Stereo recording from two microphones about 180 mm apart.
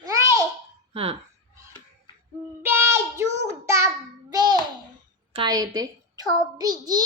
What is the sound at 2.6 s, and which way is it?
Child singing, 15° right (ahead or behind).